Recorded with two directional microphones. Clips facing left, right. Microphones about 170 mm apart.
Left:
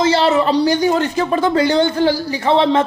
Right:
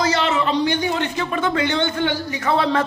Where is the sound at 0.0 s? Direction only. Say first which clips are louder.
Left 6 dB; 30° left (ahead or behind).